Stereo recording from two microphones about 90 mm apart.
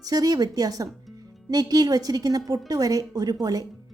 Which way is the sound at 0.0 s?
45° right (ahead or behind).